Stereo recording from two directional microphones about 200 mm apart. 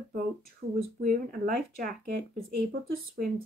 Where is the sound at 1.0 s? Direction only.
45° right (ahead or behind).